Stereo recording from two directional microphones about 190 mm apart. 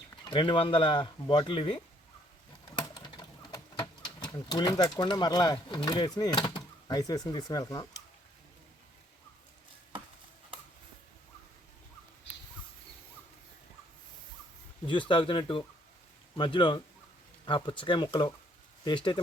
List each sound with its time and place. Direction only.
0.3 s speech: 25° left (ahead or behind)
2.9 s speech: 20° left (ahead or behind)
14.8 s speech: 25° left (ahead or behind)